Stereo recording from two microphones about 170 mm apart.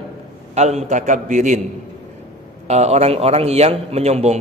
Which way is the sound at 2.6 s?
40° right (ahead or behind).